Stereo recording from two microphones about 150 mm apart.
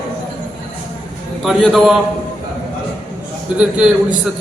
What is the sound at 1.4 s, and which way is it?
Speech, centre (ahead or behind).